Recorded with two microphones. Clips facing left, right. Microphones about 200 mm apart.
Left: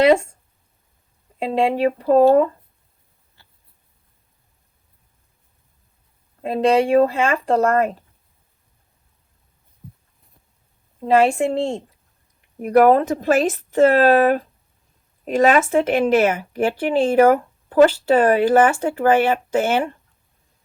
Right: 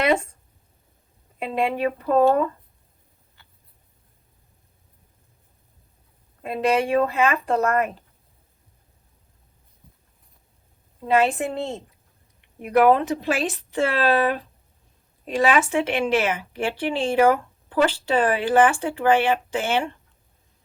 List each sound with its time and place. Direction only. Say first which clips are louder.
0.0 s speech: left 7 dB; 30° left (ahead or behind)
1.4 s speech: left 5 dB; 30° left (ahead or behind)
6.4 s speech: left 5 dB; 30° left (ahead or behind)
11.0 s a woman's voice: left 5 dB; 30° left (ahead or behind)
12.4 s speech: left 4 dB; 40° left (ahead or behind)